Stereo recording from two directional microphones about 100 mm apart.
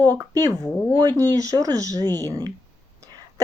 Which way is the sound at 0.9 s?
40° right (ahead or behind).